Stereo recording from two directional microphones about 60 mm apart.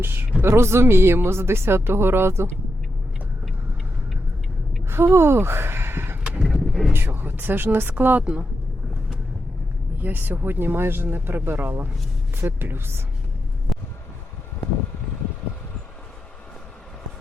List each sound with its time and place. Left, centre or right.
0.0 s a sound: right
0.4 s speech: right
4.9 s speech: right
6.4 s vehicle: centre
6.9 s speech: right
10.0 s speech: right
13.7 s a sound: centre